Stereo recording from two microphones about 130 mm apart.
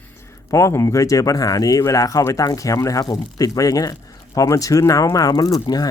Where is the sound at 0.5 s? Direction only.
25° left (ahead or behind).